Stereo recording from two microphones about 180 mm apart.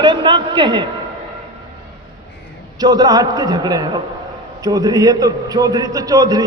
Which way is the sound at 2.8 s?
20° right (ahead or behind).